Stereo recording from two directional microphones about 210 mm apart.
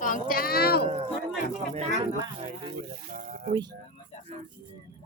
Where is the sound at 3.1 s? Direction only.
40° right (ahead or behind).